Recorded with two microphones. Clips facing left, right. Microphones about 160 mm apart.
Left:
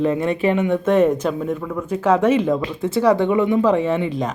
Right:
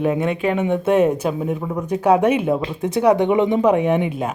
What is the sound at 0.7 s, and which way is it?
Speech, 10° right (ahead or behind).